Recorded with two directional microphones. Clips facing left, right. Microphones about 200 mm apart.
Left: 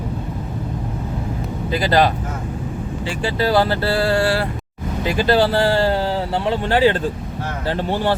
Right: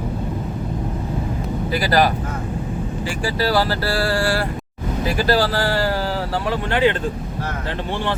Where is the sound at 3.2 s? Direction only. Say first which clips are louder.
Left 2 dB; 20° left (ahead or behind).